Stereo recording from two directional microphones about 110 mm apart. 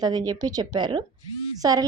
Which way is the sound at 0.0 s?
35° right (ahead or behind).